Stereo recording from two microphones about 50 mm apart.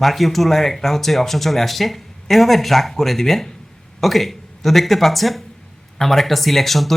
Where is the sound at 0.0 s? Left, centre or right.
Centre.